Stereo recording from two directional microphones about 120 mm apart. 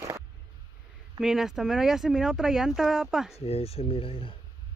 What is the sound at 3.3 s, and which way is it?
Speech, 55° left (ahead or behind).